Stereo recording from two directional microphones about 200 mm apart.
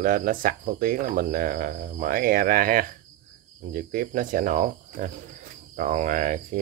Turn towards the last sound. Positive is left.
turn(degrees=-40)  # may be behind; listen again after turning